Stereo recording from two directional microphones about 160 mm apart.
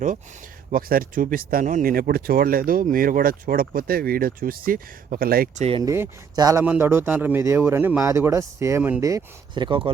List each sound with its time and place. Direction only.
0.7 s speech: 65° right (ahead or behind)
5.5 s speech: 40° right (ahead or behind)
5.8 s a man's voice: 20° right (ahead or behind)
9.0 s speech: 25° right (ahead or behind)